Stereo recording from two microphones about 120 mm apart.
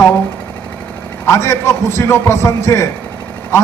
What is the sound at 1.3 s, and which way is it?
A man's voice, 25° left (ahead or behind).